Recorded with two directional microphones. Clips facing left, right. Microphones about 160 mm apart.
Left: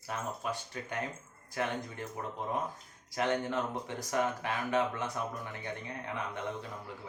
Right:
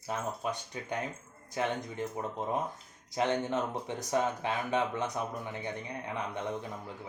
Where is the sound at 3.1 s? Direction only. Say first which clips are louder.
Right 2 dB; 20° right (ahead or behind).